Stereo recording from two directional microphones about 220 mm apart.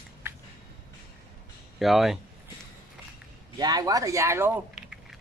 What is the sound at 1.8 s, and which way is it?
Speech, centre (ahead or behind).